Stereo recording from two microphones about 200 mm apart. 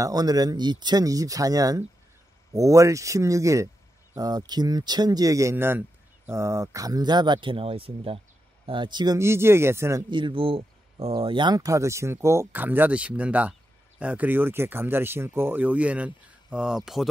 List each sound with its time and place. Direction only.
0.0 s speech: 20° right (ahead or behind); by 17.1 s centre (ahead or behind)